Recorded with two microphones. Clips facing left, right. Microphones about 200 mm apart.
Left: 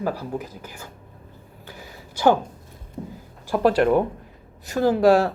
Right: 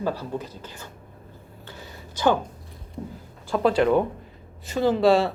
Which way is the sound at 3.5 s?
10° left (ahead or behind).